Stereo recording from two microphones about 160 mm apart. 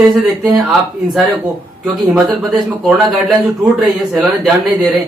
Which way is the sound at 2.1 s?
Centre (ahead or behind).